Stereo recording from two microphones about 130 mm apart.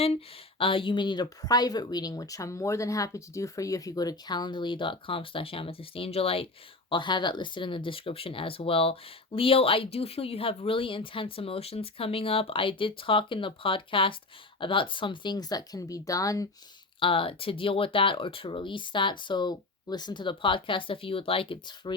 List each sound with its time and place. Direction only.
0.6 s speech: 40° left (ahead or behind)
6.9 s speech: 35° left (ahead or behind)
17.0 s speech: 40° left (ahead or behind)